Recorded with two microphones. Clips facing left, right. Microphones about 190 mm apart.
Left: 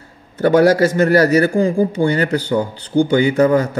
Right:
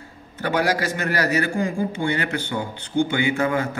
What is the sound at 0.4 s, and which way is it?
A man's voice, 45° left (ahead or behind).